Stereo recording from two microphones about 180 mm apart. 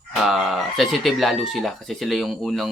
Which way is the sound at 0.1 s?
5° right (ahead or behind).